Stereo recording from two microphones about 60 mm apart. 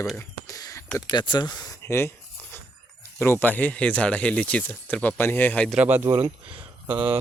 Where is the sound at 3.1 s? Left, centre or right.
Left.